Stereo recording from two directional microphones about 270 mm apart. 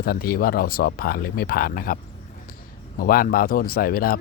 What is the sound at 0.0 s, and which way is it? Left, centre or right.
Speech, left.